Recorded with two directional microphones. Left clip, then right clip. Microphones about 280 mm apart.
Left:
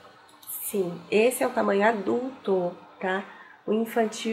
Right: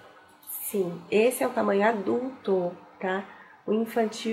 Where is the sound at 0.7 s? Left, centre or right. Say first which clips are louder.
Even; left.